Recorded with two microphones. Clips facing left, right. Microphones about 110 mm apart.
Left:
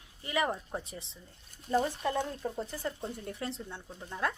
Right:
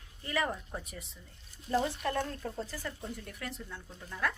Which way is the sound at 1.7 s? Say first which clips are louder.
Left 1 dB; 15° left (ahead or behind).